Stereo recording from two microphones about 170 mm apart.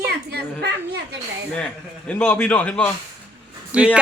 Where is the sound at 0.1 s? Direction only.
70° right (ahead or behind).